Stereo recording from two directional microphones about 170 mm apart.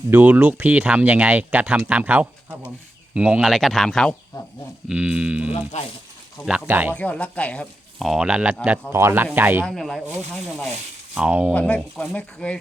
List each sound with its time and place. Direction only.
0.1 s speech: 10° right (ahead or behind)
5.5 s speech: 35° left (ahead or behind)
6.7 s speech: 10° right (ahead or behind)
6.9 s speech: 10° left (ahead or behind); by 9.6 s 10° right (ahead or behind)
9.6 s speech: centre (ahead or behind)
11.1 s speech: 10° right (ahead or behind)
11.5 s speech: 5° left (ahead or behind)